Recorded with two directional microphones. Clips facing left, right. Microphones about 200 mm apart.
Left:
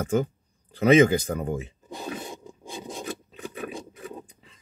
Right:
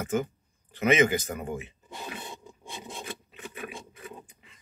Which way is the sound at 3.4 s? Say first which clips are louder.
Left 5 dB; 35° left (ahead or behind).